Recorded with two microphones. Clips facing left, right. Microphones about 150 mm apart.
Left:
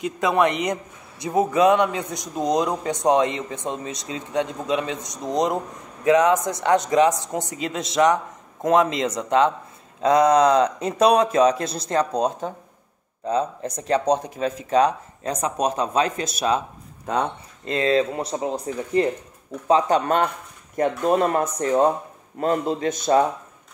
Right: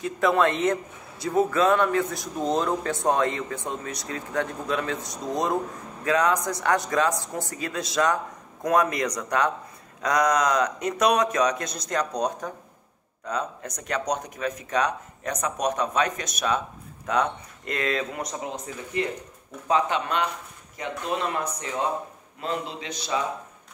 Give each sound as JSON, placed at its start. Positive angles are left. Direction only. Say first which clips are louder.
{"t": 0.0, "sound": "a man's voice", "louder": "left 2 dB", "side_deg": 20}
{"t": 19.7, "sound": "speech", "louder": "left 6 dB", "side_deg": 45}